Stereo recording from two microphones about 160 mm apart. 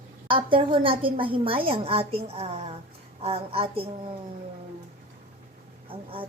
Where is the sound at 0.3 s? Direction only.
30° right (ahead or behind).